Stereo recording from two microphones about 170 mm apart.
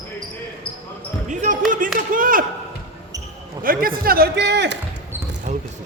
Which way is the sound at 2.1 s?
55° right (ahead or behind).